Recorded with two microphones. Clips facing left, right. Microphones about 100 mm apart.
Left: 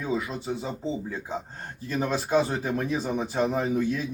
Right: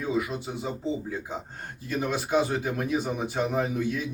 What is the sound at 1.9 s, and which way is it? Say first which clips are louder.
Speech: left 2 dB; 35° left (ahead or behind).